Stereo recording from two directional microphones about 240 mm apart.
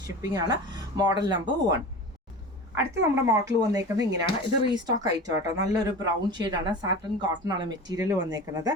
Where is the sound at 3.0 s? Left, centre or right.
Centre.